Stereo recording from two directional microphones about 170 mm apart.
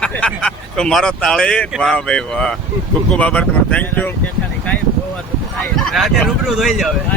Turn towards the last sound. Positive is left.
turn(degrees=0)  # may be behind; listen again after turning